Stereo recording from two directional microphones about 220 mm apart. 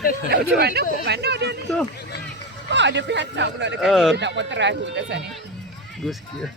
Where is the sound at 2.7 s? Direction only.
55° right (ahead or behind).